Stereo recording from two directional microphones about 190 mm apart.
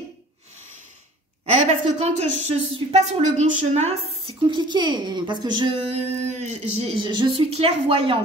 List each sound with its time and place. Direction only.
1.4 s a woman's voice: 30° right (ahead or behind)
4.5 s a woman's voice: 25° right (ahead or behind)
6.4 s a woman's voice: 35° right (ahead or behind)
7.0 s a woman's voice: 25° right (ahead or behind)